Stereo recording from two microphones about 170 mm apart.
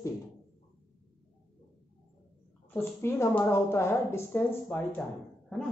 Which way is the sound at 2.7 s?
15° left (ahead or behind).